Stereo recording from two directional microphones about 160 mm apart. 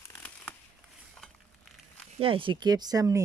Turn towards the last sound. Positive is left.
turn(degrees=-20)  # may be behind; listen again after turning